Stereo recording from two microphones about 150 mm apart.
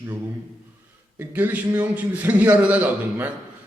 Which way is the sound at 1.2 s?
15° right (ahead or behind).